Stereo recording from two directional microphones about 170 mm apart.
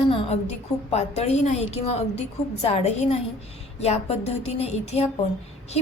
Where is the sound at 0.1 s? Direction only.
35° left (ahead or behind).